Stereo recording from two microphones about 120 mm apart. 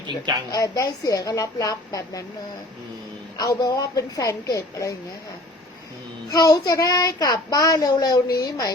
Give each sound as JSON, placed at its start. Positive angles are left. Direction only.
{"t": 0.5, "sound": "child singing", "side_deg": 30}
{"t": 3.3, "sound": "child singing", "side_deg": 35}
{"t": 6.4, "sound": "child singing", "side_deg": 30}